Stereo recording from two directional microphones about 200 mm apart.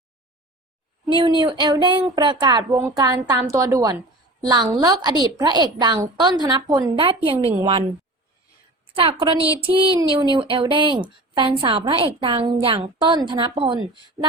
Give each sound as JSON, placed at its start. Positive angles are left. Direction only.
{"t": 1.0, "sound": "a woman's voice", "side_deg": -25}
{"t": 9.0, "sound": "a woman's voice", "side_deg": -25}